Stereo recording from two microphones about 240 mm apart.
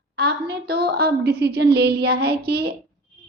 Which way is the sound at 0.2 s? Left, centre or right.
Right.